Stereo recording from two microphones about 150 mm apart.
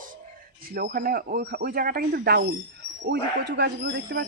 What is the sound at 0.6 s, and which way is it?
Speech, 80° right.